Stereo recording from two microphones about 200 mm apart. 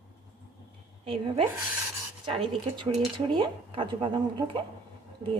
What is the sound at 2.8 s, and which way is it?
Speech, 25° right (ahead or behind).